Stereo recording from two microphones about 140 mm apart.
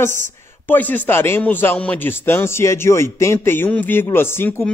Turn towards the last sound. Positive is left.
turn(degrees=15)  # may be behind; listen again after turning